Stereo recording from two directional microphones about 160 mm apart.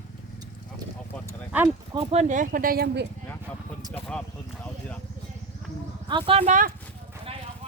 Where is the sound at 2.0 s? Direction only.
45° right (ahead or behind); by 3.1 s 85° right.